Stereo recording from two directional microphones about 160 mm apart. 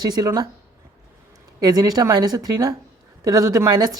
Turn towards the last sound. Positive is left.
turn(degrees=-25)  # may be behind; listen again after turning